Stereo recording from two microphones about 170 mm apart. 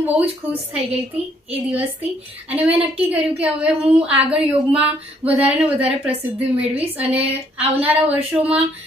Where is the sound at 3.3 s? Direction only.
5° right (ahead or behind).